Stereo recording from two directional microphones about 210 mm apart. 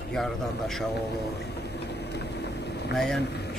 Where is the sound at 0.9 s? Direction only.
50° left (ahead or behind).